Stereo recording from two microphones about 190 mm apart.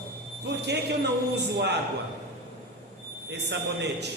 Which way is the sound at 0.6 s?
60° right (ahead or behind).